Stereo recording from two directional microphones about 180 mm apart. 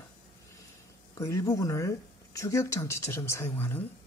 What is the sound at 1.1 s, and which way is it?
Speech, 15° left (ahead or behind).